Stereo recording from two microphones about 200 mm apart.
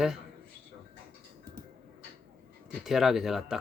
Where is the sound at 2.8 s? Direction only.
Centre (ahead or behind).